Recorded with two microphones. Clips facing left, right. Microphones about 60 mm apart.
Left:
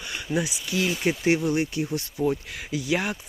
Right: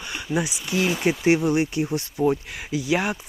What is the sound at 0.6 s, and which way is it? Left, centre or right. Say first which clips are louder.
Speech: right 3 dB; right.